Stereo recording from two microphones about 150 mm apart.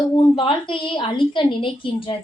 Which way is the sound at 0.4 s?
35° left (ahead or behind).